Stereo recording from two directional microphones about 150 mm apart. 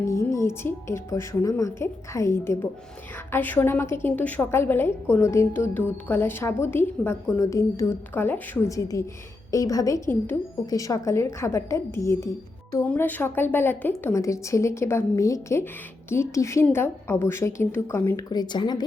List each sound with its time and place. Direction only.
0.3 s a woman's voice: 15° left (ahead or behind)
18.3 s a woman's voice: 30° left (ahead or behind)